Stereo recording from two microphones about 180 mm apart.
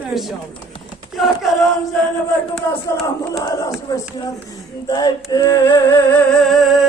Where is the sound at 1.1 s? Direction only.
Centre (ahead or behind).